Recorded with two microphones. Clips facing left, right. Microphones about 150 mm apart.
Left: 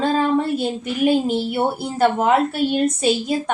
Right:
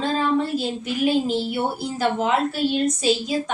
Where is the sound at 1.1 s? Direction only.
55° left (ahead or behind).